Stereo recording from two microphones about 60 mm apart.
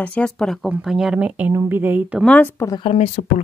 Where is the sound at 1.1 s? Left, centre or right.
Right.